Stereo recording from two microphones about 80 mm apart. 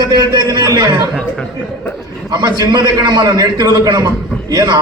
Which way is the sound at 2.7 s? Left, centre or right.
Right.